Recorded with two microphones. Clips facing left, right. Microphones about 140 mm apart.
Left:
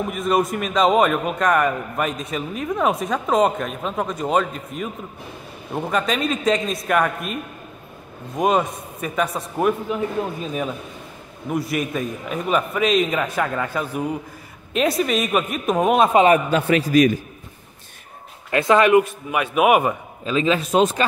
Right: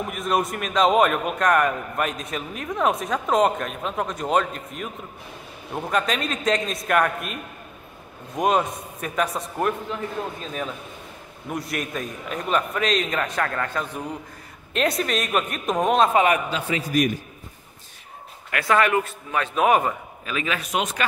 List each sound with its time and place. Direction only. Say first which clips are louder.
0.1 s a man's voice: left 3 dB; centre (ahead or behind)
8.4 s a man's voice: left 2 dB; centre (ahead or behind)
16.1 s speech: left 5 dB; 20° left (ahead or behind)
16.4 s a man's voice: left 8 dB; 50° left (ahead or behind)
16.9 s a man's voice: left 6 dB; 90° left
18.5 s a man's voice: left 6 dB; 20° left (ahead or behind)
20.2 s speech: left 8 dB; 25° left (ahead or behind)